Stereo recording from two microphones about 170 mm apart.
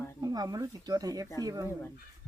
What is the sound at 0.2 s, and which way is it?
Speech, 20° right (ahead or behind).